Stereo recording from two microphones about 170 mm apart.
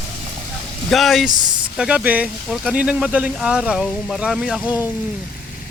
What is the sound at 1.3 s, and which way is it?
Speech, 25° right (ahead or behind).